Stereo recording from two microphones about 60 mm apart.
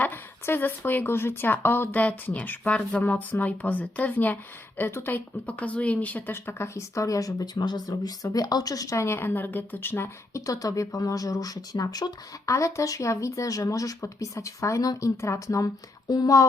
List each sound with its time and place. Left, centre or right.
0.0 s speech: left
2.0 s speech: left
4.8 s speech: left
5.1 s a woman's voice: left
9.0 s a woman's voice: left
10.4 s speech: left
12.5 s a woman's voice: left
15.5 s speech: left